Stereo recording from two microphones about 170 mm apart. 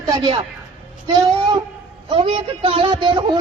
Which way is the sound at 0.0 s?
25° right (ahead or behind).